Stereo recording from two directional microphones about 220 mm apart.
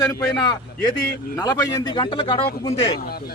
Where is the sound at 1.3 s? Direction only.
15° left (ahead or behind).